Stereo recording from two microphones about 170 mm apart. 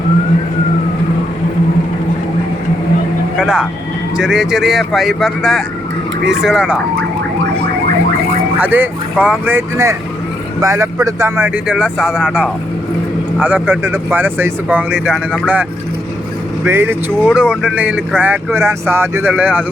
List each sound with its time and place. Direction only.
3.3 s vehicle: 5° right (ahead or behind)
4.2 s speech: 5° right (ahead or behind)
8.5 s speech: 10° right (ahead or behind)
16.6 s speech: 10° right (ahead or behind)